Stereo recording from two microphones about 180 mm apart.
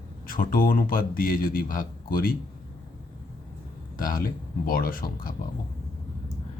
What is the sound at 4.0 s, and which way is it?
Speech, 50° left (ahead or behind).